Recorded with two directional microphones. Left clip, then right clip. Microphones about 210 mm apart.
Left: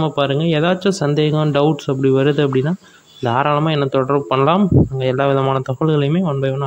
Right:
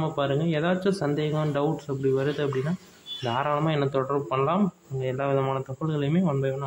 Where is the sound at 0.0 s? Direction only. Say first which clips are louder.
Left 9 dB; 40° left (ahead or behind).